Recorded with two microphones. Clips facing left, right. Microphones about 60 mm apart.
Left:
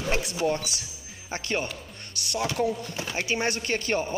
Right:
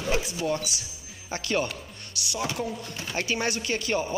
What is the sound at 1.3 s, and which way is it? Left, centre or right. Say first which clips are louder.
Speech: right 2 dB; left.